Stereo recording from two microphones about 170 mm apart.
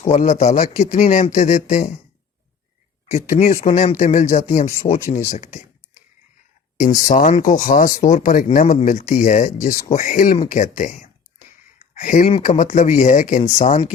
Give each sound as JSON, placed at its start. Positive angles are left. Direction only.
{"t": 0.1, "sound": "speech", "side_deg": 45}
{"t": 3.1, "sound": "speech", "side_deg": 40}
{"t": 3.9, "sound": "speech", "side_deg": 50}
{"t": 6.7, "sound": "speech", "side_deg": 50}
{"t": 11.8, "sound": "a sound", "side_deg": 50}
{"t": 12.3, "sound": "speech", "side_deg": 45}